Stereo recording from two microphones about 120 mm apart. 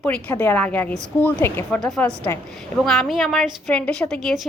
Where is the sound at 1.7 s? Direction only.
5° left (ahead or behind).